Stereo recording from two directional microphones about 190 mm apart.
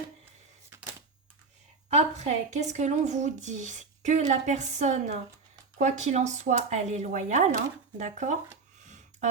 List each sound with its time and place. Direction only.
1.9 s speech: 35° right (ahead or behind)